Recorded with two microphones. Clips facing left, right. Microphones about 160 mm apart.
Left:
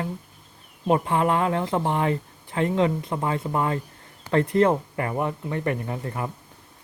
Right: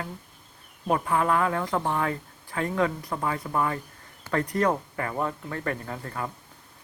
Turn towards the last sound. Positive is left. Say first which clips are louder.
# left 4 dB
turn(degrees=20)  # may be behind; listen again after turning